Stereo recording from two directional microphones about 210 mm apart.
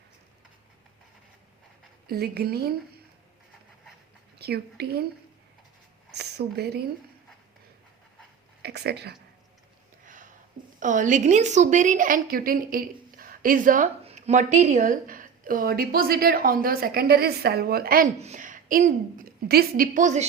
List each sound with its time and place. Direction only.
2.0 s a woman's voice: 50° right (ahead or behind)
4.4 s a woman's voice: 50° right (ahead or behind)
6.1 s a sound: 50° right (ahead or behind)
8.6 s a sound: 50° right (ahead or behind)
10.8 s a woman's voice: 35° right (ahead or behind)
18.2 s a woman's voice: 35° right (ahead or behind)